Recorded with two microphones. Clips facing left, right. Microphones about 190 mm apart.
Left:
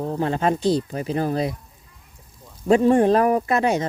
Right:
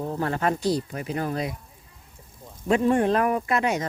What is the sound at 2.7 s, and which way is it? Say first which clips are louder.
Speech: left 5 dB; 30° left (ahead or behind).